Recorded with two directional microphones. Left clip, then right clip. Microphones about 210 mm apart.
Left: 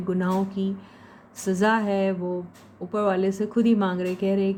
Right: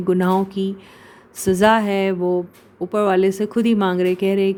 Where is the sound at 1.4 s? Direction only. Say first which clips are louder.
Right 8 dB; 40° right (ahead or behind).